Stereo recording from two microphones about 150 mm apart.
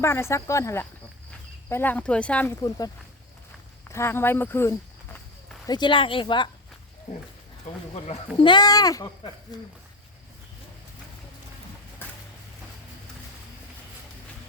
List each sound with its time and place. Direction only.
0.0 s speech: 15° left (ahead or behind)
2.6 s speech: 25° left (ahead or behind)
5.6 s speech: 30° left (ahead or behind)
7.7 s speech: 55° left (ahead or behind)
8.4 s speech: 30° left (ahead or behind)